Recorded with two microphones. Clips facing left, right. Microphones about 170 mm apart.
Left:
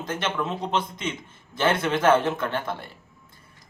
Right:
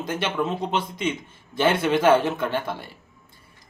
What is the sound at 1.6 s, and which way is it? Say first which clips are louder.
Speech: right 2 dB; 10° right (ahead or behind).